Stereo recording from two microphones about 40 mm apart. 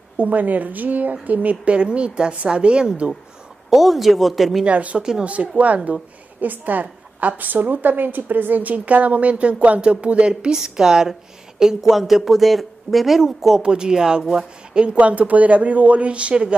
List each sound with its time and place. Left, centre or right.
0.2 s a woman's voice: right
3.7 s speech: centre
4.6 s speech: right
4.9 s speech: centre
5.2 s speech: right
6.4 s a woman's voice: right
10.5 s speech: centre
13.6 s a woman's voice: centre
15.0 s speech: right